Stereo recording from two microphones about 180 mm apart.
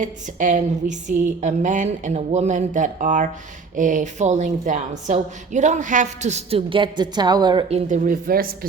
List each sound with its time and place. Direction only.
0.0 s a woman's voice: 45° right (ahead or behind); by 7.6 s 25° right (ahead or behind)
7.7 s a woman's voice: 40° right (ahead or behind)